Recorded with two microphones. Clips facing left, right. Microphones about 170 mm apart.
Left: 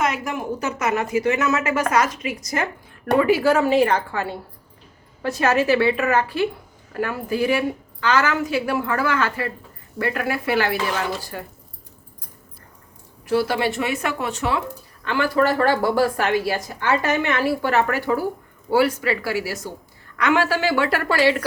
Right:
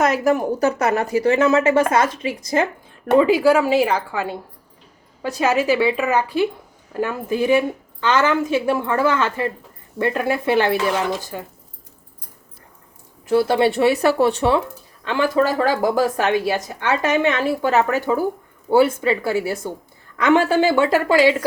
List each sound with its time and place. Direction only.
0.0 s a woman's voice: 40° right (ahead or behind); by 11.4 s 20° right (ahead or behind)
13.5 s speech: 30° right (ahead or behind)
15.0 s a woman's voice: 20° right (ahead or behind)